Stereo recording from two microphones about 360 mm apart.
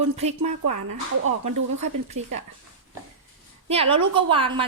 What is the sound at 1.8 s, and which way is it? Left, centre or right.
Speech, centre.